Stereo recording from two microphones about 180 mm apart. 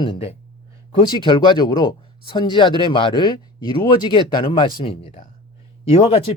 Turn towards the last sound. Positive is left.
turn(degrees=30)  # may be behind; listen again after turning